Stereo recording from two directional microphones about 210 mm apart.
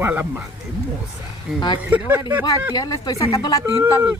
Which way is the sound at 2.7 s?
15° left (ahead or behind).